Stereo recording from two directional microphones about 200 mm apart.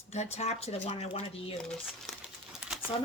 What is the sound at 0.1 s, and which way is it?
Speech, 35° left (ahead or behind).